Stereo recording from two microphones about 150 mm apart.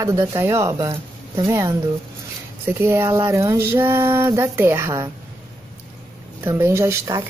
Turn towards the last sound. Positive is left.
turn(degrees=-20)  # may be behind; listen again after turning